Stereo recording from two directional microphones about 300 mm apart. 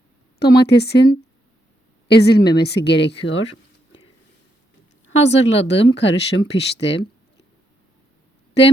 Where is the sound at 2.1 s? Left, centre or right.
Left.